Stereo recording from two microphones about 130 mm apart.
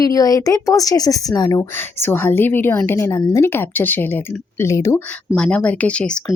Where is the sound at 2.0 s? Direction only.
15° left (ahead or behind).